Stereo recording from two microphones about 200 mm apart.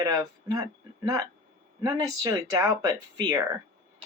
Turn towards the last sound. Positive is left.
turn(degrees=-15)  # may be behind; listen again after turning